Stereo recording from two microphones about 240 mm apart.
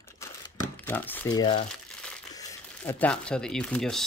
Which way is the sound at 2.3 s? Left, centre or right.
Centre.